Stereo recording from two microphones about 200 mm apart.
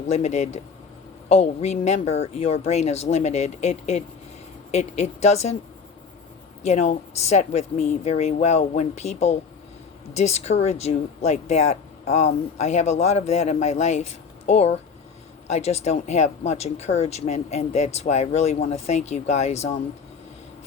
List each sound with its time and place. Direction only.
0.1 s speech: 35° left (ahead or behind)
6.6 s speech: 35° left (ahead or behind)